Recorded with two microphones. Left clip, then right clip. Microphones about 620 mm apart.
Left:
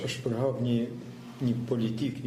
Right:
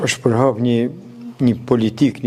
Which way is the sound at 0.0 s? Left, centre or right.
Right.